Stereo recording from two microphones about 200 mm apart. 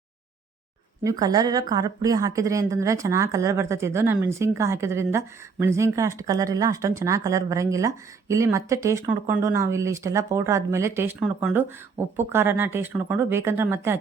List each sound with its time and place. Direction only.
1.0 s a woman's voice: 20° right (ahead or behind)